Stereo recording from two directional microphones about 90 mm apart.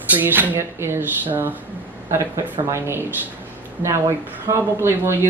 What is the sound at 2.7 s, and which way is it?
Speech, 30° right (ahead or behind).